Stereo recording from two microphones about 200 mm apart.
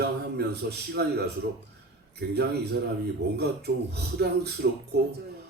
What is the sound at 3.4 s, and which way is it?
A man's voice, 55° right (ahead or behind).